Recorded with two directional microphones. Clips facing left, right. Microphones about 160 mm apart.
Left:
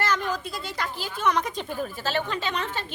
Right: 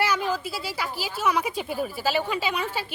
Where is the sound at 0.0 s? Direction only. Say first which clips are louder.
Right 2 dB; 10° right (ahead or behind).